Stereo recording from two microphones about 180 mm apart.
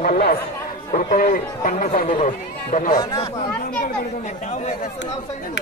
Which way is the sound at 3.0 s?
20° left (ahead or behind).